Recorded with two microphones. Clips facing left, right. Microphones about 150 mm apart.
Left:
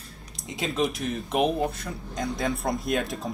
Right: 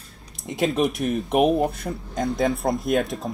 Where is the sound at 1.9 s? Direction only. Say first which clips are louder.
Right 6 dB; 40° right (ahead or behind).